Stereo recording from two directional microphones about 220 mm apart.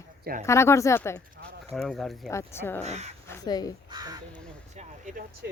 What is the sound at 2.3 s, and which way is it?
Speech, 10° left (ahead or behind).